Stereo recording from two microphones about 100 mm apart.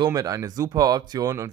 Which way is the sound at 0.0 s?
35° right (ahead or behind).